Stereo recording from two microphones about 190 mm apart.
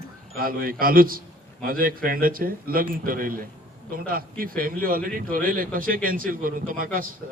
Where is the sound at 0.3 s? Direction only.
50° right (ahead or behind).